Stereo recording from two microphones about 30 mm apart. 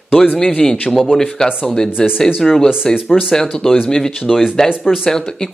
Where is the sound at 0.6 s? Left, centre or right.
Left.